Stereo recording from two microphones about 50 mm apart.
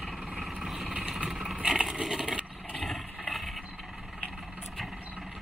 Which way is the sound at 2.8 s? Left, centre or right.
Centre.